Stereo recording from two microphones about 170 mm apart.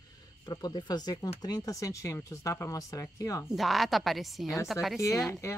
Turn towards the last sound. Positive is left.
turn(degrees=15)  # may be behind; listen again after turning